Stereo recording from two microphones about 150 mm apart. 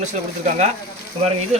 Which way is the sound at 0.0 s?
50° right (ahead or behind).